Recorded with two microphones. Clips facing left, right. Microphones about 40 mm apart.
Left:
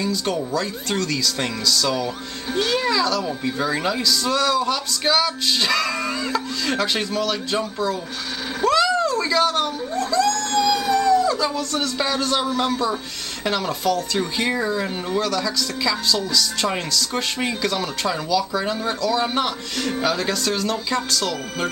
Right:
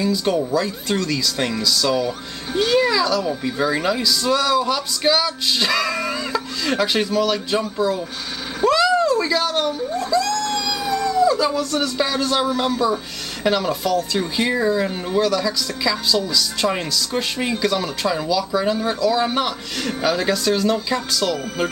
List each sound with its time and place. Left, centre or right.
0.0 s speech: centre